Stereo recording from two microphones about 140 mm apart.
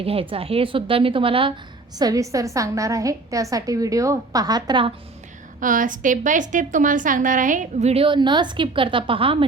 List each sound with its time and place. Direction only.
0.0 s a woman's voice: 40° right (ahead or behind)
2.0 s a woman's voice: 25° right (ahead or behind)
5.5 s a woman's voice: 70° right (ahead or behind); by 8.0 s 50° right (ahead or behind)
8.0 s a woman's voice: 35° right (ahead or behind)